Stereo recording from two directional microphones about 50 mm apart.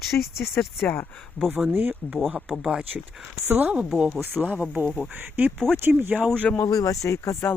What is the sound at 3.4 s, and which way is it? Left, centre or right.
Speech, right.